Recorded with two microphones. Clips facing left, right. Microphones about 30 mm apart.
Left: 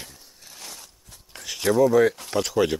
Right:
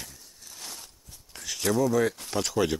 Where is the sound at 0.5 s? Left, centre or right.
Centre.